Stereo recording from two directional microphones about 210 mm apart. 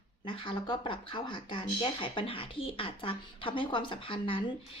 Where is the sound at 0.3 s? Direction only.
25° left (ahead or behind).